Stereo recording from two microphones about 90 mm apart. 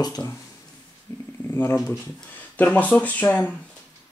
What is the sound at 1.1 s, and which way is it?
Speech, 30° left (ahead or behind).